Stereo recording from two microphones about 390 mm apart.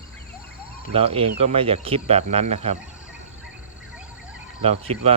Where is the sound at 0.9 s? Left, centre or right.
Centre.